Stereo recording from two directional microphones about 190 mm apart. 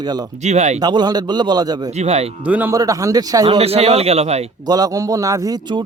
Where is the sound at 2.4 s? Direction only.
10° right (ahead or behind).